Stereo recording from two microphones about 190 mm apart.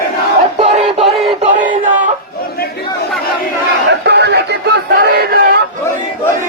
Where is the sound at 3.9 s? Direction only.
60° right (ahead or behind).